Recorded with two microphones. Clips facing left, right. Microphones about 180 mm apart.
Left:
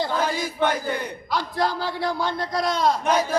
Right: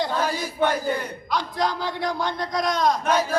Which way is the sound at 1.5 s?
5° left (ahead or behind).